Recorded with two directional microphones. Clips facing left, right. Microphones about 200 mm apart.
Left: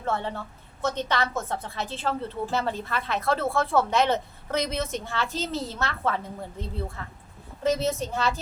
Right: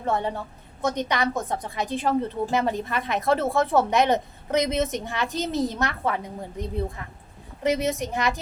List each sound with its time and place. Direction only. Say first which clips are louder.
0.0 s a woman's voice: right 3 dB; 15° right (ahead or behind)